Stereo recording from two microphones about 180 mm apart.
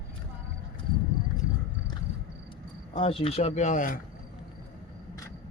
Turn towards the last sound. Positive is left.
turn(degrees=45)  # may be behind; listen again after turning